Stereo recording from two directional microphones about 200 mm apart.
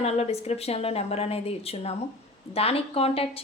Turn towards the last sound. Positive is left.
turn(degrees=30)  # may be behind; listen again after turning